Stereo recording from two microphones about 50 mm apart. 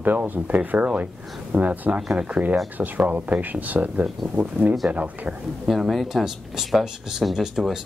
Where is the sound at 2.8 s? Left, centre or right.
Right.